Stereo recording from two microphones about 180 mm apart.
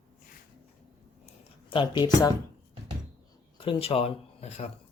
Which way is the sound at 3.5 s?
30° left (ahead or behind).